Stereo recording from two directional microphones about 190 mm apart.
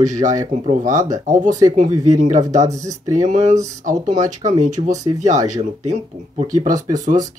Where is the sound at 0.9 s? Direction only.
15° right (ahead or behind).